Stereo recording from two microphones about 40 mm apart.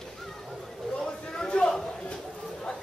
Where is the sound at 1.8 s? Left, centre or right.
Left.